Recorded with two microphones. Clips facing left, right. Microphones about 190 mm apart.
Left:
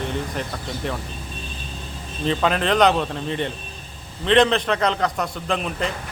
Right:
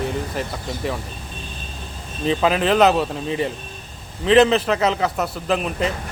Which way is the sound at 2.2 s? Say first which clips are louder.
Right 2 dB; 5° right (ahead or behind).